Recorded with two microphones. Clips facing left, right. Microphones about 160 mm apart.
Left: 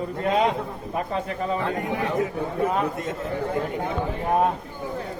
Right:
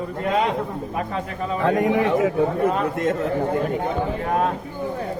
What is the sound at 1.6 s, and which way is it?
Speech, 90° right.